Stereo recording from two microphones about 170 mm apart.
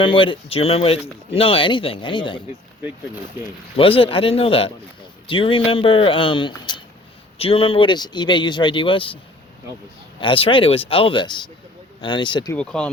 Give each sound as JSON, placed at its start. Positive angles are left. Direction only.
{"t": 0.0, "sound": "a man's voice", "side_deg": 30}
{"t": 3.8, "sound": "a man's voice", "side_deg": 30}
{"t": 10.2, "sound": "a man's voice", "side_deg": 30}
{"t": 12.5, "sound": "speech", "side_deg": 5}